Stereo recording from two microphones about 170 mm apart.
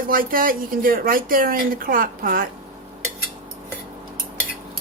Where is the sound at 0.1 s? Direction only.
55° right (ahead or behind).